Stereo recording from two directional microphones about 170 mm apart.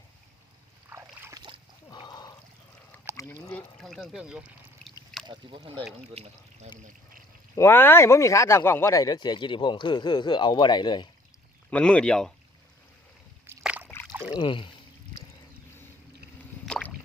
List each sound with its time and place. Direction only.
0.9 s boat: 15° right (ahead or behind)
1.9 s pour: 25° left (ahead or behind)
3.2 s a sound: 20° left (ahead or behind)
3.8 s pour: 5° left (ahead or behind)
5.2 s speech: 30° right (ahead or behind)
7.5 s speech: 15° left (ahead or behind)
11.7 s speech: 5° left (ahead or behind)
13.6 s rowboat: 5° right (ahead or behind)
13.8 s rowboat: 10° left (ahead or behind)
14.3 s speech: 30° left (ahead or behind)
16.6 s boat: 5° left (ahead or behind)